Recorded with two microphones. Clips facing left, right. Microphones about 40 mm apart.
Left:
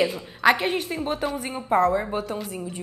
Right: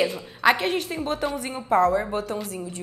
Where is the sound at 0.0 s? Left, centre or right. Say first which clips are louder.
Left 1 dB; centre.